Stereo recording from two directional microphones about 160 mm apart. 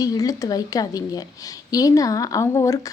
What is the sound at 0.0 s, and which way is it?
A woman's voice, 20° left (ahead or behind).